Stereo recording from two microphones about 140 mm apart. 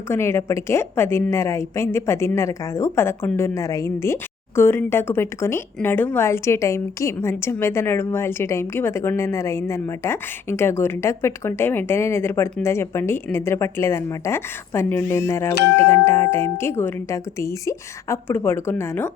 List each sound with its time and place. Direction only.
0.1 s a woman's voice: 20° left (ahead or behind)